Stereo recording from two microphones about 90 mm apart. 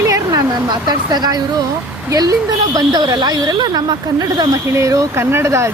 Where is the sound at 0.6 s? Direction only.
50° right (ahead or behind).